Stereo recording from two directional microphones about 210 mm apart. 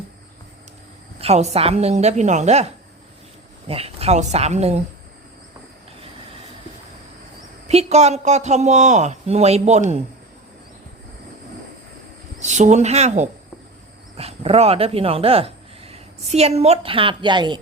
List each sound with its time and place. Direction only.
1.2 s speech: 30° right (ahead or behind)
7.7 s speech: 30° right (ahead or behind)
12.4 s speech: 35° right (ahead or behind)